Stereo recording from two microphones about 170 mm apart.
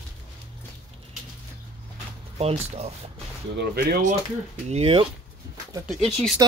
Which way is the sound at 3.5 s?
75° right (ahead or behind).